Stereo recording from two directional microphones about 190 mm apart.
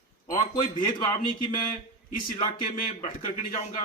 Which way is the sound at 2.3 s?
45° left (ahead or behind).